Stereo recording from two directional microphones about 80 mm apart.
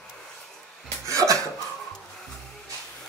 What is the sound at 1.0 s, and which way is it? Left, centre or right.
Cough, right.